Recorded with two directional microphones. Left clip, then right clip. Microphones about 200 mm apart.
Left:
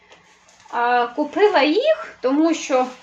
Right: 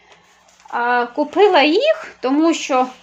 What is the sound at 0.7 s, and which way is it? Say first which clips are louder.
A woman's voice: right 1 dB; 50° right (ahead or behind).